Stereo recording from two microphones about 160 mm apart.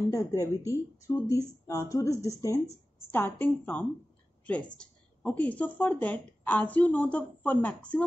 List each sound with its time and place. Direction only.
0.1 s speech: 15° left (ahead or behind)